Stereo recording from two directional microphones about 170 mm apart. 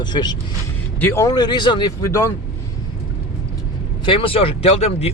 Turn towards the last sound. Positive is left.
turn(degrees=35)  # may be behind; listen again after turning